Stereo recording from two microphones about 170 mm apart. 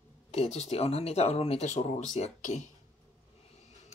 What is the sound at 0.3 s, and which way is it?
Speech, 40° left (ahead or behind).